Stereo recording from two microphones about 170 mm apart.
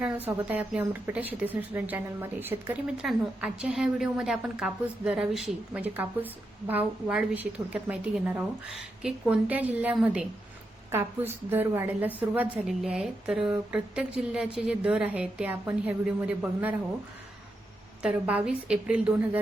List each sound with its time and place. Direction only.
0.0 s speech: 15° right (ahead or behind)
18.0 s a woman's voice: 5° right (ahead or behind)